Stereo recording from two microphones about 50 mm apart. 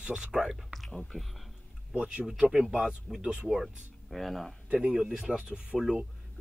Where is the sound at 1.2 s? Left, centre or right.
Centre.